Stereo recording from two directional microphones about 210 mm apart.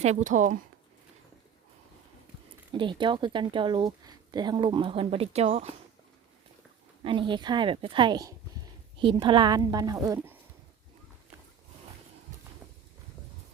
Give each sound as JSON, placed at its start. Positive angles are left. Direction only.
{"t": 0.0, "sound": "speech", "side_deg": -35}
{"t": 2.7, "sound": "a woman's voice", "side_deg": -25}
{"t": 7.0, "sound": "a woman's voice", "side_deg": -25}